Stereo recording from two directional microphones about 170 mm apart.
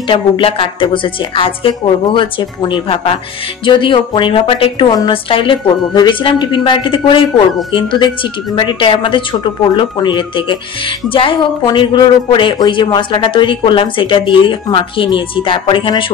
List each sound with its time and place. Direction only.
0.1 s a woman's voice: 30° left (ahead or behind)